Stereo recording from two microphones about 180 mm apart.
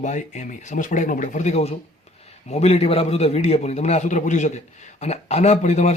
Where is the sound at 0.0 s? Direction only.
40° left (ahead or behind).